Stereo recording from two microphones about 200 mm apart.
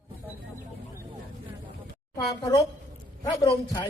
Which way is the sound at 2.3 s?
15° left (ahead or behind).